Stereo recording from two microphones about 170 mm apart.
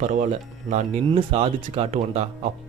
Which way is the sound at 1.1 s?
35° right (ahead or behind).